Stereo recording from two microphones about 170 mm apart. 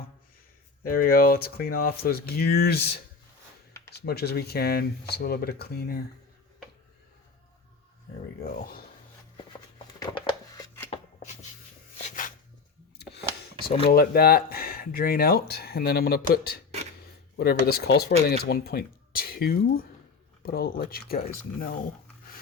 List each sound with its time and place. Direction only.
0.9 s speech: 60° left (ahead or behind)
3.9 s speech: 70° left (ahead or behind)
8.5 s speech: 60° left (ahead or behind)
9.4 s a sound: 30° left (ahead or behind)
10.8 s a sound: 40° left (ahead or behind)
13.9 s speech: 60° left (ahead or behind)